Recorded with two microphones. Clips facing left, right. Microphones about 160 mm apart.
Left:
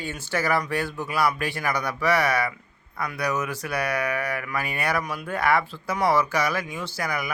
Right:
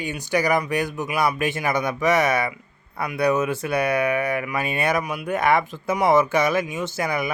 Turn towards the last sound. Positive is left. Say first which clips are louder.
# right 5 dB
turn(degrees=-25)  # may be behind; listen again after turning